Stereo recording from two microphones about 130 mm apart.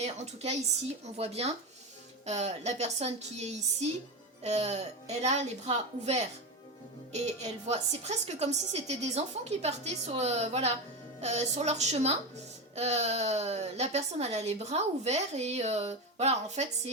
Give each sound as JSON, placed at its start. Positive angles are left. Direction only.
{"t": 0.0, "sound": "a woman's voice", "side_deg": -60}